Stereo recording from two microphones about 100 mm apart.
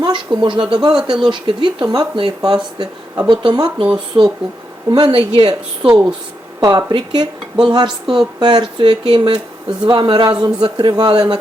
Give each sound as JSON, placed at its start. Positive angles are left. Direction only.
{"t": 0.0, "sound": "speech", "side_deg": -55}
{"t": 4.1, "sound": "speech", "side_deg": -20}
{"t": 4.9, "sound": "speech", "side_deg": -50}
{"t": 5.8, "sound": "speech", "side_deg": -15}
{"t": 6.7, "sound": "speech", "side_deg": -50}
{"t": 7.9, "sound": "speech", "side_deg": -5}
{"t": 8.4, "sound": "speech", "side_deg": -45}